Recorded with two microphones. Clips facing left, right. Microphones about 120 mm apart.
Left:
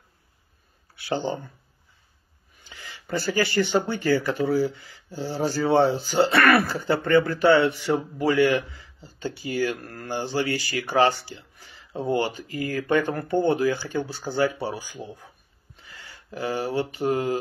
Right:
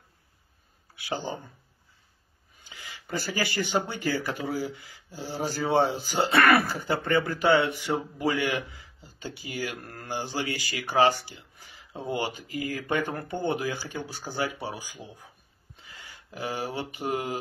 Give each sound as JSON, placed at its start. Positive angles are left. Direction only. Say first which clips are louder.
{"t": 2.7, "sound": "speech", "louder": "left 4 dB", "side_deg": -10}